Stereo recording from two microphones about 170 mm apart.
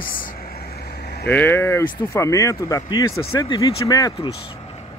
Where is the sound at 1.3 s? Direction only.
10° left (ahead or behind).